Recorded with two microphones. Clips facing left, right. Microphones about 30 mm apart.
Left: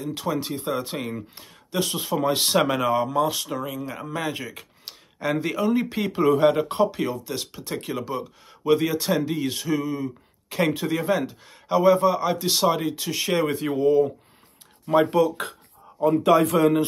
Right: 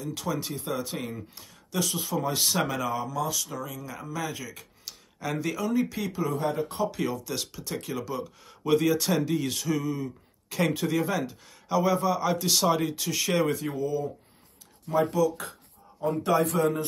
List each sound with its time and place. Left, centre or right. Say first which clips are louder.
0.0 s speech: left 4 dB; left
0.6 s speech: left 4 dB; left
6.2 s a man's voice: left 11 dB; left
7.5 s speech: left 4 dB; left
13.6 s speech: left 10 dB; left
16.0 s a man's voice: left 7 dB; left